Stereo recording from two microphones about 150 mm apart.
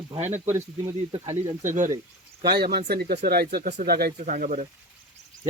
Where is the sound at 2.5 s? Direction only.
90° right; by 4.6 s 60° right (ahead or behind).